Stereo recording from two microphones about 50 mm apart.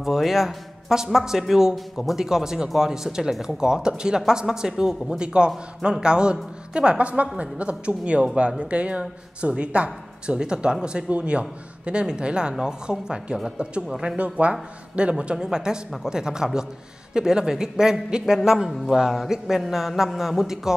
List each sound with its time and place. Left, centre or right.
0.0 s a man's voice: centre
14.1 s a man's voice: right; by 20.7 s centre